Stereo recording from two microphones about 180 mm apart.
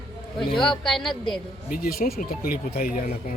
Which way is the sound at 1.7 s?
55° left (ahead or behind).